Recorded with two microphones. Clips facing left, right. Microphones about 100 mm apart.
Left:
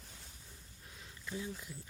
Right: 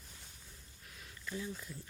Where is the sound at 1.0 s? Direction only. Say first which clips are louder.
Even; 20° left (ahead or behind).